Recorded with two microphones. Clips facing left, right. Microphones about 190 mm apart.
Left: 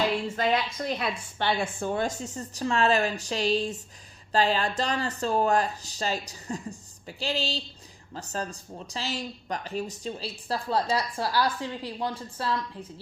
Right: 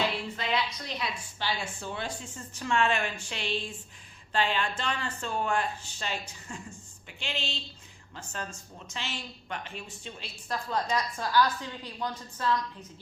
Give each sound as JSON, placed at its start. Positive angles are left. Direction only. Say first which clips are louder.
{"t": 0.3, "sound": "speech", "louder": "left 5 dB", "side_deg": 45}